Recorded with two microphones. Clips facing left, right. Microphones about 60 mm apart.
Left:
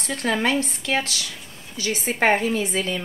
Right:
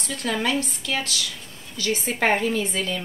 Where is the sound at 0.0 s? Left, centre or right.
Left.